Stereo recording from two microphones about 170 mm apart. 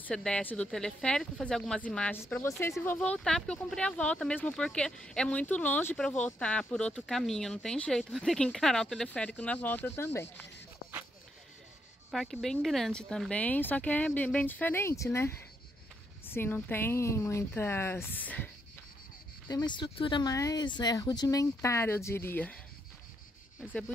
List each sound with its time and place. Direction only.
0.0 s speech: 5° left (ahead or behind)
12.1 s speech: centre (ahead or behind)
19.4 s speech: 25° left (ahead or behind)